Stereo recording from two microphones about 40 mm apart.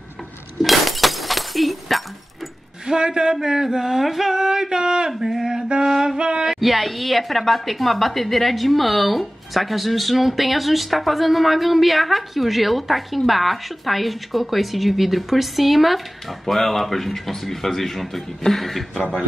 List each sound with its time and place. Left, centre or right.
0.6 s breaking: centre
2.9 s speech: right
5.2 s a sound: centre
5.9 s music: centre
6.1 s a sound: right
6.4 s a woman's voice: centre